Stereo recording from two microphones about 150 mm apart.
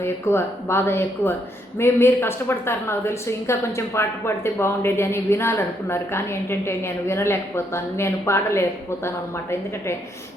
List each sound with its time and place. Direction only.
0.0 s speech: 15° left (ahead or behind)